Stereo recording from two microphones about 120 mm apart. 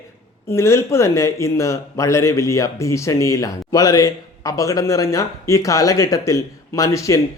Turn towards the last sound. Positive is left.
turn(degrees=25)  # may be behind; listen again after turning